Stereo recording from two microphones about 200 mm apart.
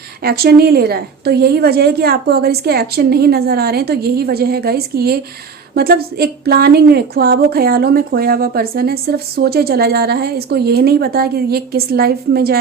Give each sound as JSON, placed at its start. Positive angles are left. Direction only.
{"t": 0.2, "sound": "speech", "side_deg": -50}